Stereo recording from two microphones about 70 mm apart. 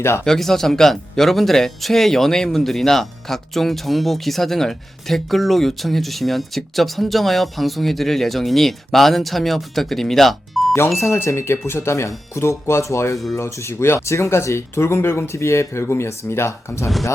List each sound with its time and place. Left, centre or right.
0.3 s speech: centre
10.9 s speech: left